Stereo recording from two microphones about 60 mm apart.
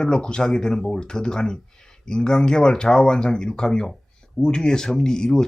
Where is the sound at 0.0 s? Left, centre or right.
Centre.